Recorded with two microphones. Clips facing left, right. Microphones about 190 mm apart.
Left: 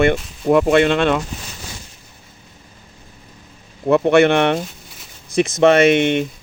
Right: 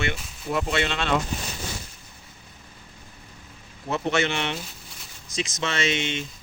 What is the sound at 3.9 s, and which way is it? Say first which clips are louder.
Speech: left 12 dB; 60° left (ahead or behind).